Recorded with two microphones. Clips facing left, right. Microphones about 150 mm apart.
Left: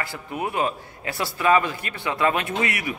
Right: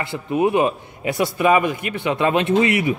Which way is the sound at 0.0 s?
20° right (ahead or behind).